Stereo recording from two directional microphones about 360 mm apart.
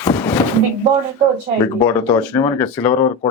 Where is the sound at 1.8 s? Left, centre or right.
Centre.